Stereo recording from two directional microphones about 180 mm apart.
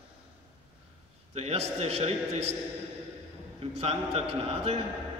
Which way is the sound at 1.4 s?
35° right (ahead or behind).